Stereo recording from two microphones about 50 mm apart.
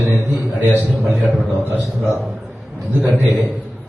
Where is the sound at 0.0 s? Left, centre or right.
Right.